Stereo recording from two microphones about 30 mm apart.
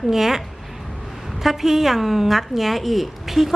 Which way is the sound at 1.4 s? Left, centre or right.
Centre.